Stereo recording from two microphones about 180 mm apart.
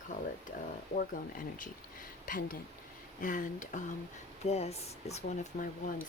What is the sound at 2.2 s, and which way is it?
Speech, 50° left (ahead or behind).